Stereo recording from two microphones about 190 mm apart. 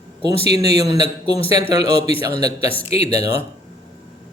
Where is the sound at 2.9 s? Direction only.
35° left (ahead or behind).